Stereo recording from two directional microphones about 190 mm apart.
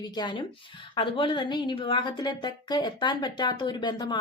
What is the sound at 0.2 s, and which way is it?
Speech, 25° left (ahead or behind).